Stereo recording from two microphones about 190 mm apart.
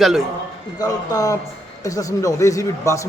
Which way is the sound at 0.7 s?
20° left (ahead or behind).